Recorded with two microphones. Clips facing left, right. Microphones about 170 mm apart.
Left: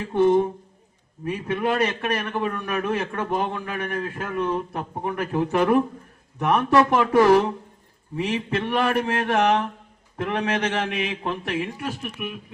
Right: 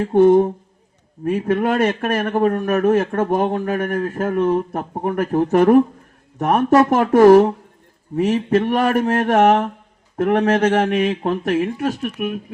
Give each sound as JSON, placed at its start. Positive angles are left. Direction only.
{"t": 0.0, "sound": "a man's voice", "side_deg": -50}